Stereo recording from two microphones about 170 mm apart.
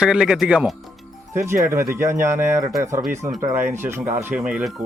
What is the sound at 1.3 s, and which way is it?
Speech, 15° right (ahead or behind).